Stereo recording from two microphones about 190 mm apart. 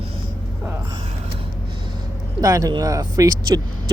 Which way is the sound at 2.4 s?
20° right (ahead or behind).